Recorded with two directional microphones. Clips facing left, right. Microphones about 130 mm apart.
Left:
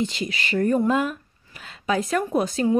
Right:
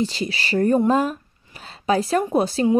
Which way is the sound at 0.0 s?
35° right (ahead or behind).